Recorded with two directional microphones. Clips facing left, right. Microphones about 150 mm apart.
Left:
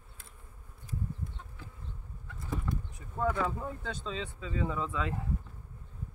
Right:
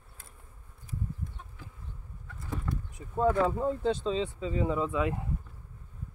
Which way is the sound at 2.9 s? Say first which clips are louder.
Right 6 dB; 20° right (ahead or behind).